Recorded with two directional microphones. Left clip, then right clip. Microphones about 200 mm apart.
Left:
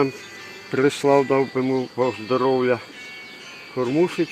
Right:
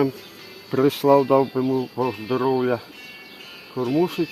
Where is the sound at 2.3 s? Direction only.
20° right (ahead or behind).